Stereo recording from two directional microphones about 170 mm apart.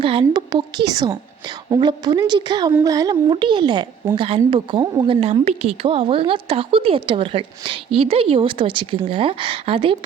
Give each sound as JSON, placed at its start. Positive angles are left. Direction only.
{"t": 0.0, "sound": "a woman's voice", "side_deg": -30}